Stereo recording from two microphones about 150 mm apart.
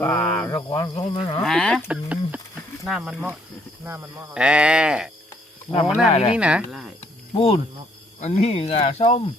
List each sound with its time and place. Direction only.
0.1 s cricket: 10° left (ahead or behind)
0.5 s speech: 25° left (ahead or behind)
0.9 s livestock: 35° left (ahead or behind)
1.4 s speech: 5° left (ahead or behind)
1.9 s speech: 10° right (ahead or behind)
3.8 s speech: 15° right (ahead or behind)
6.1 s speech: 45° left (ahead or behind)
6.3 s speech: 5° right (ahead or behind)
7.3 s livestock: 35° left (ahead or behind)
8.2 s speech: 45° left (ahead or behind)